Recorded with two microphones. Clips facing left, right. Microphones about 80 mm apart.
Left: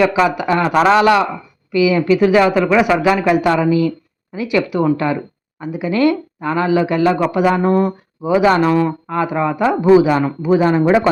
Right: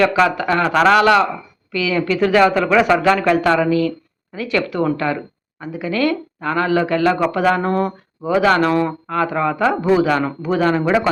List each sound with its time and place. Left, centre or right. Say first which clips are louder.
0.0 s speech: left 1 dB; centre
7.7 s speech: left 4 dB; centre; by 11.1 s left